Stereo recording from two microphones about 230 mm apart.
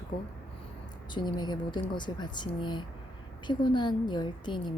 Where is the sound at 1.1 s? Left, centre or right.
Centre.